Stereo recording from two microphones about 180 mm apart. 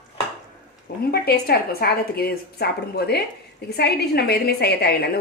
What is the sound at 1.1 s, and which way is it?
A woman's voice, 60° left (ahead or behind).